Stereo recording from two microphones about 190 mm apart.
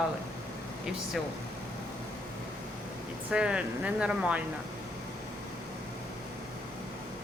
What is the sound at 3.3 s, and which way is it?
A woman's voice, 5° right (ahead or behind).